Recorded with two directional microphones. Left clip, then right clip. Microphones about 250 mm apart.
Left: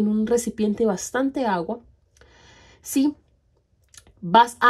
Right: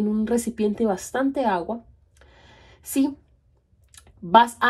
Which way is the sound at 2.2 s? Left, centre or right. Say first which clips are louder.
Left 1 dB; left.